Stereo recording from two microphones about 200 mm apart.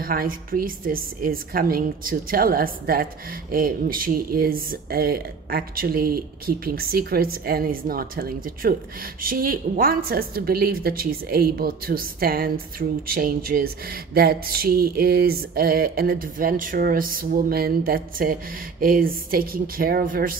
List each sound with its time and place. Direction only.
0.0 s a woman's voice: 45° right (ahead or behind)